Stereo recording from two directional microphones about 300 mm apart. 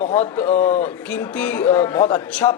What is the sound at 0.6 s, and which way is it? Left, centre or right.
Speech, left.